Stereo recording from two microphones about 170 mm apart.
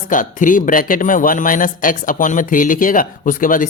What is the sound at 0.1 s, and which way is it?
Speech, 50° left (ahead or behind).